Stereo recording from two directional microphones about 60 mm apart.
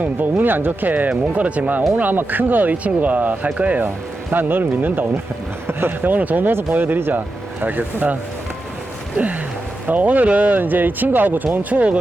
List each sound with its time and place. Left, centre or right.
0.0 s speech: right
9.8 s speech: right